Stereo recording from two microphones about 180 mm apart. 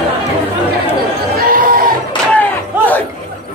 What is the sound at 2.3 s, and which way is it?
Crowd, 10° left (ahead or behind).